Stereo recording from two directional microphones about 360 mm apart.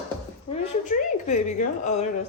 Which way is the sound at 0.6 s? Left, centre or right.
Centre.